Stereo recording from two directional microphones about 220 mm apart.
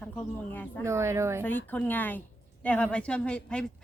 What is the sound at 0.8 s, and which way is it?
Speech, 10° right (ahead or behind).